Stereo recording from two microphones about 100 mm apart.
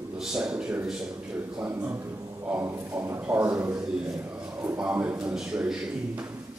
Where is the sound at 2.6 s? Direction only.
25° right (ahead or behind).